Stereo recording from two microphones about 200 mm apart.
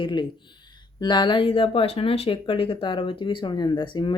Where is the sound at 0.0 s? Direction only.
20° left (ahead or behind).